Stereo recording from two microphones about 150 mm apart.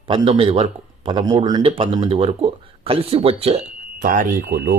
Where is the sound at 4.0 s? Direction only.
60° right (ahead or behind); by 4.7 s 85° right.